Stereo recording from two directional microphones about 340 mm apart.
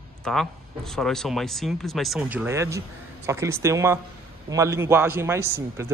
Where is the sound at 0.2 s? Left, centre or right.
Centre.